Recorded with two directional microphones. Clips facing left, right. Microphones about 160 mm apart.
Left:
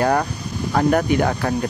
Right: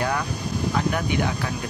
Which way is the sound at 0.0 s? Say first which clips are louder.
Left 7 dB; 45° left (ahead or behind).